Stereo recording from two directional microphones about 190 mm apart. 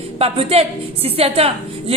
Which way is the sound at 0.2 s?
30° right (ahead or behind).